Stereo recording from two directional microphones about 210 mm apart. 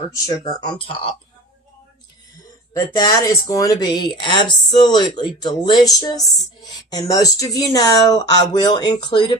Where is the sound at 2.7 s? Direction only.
20° left (ahead or behind).